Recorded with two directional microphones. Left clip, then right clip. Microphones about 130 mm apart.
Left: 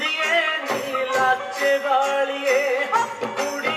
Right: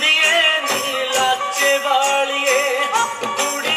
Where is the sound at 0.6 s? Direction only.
35° left (ahead or behind).